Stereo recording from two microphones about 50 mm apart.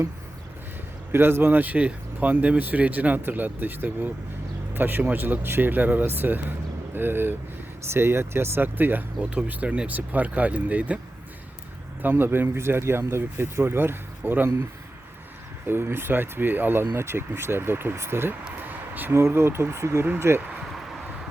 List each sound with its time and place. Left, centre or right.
1.1 s speech: right
7.9 s speech: right
9.3 s speech: right
12.0 s speech: right
15.6 s speech: right
17.9 s speech: right
19.3 s speech: right
20.1 s speech: right